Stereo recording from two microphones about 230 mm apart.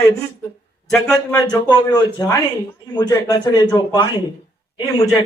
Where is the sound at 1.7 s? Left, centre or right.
Centre.